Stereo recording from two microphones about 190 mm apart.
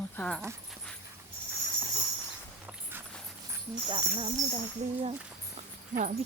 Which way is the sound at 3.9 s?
25° right (ahead or behind).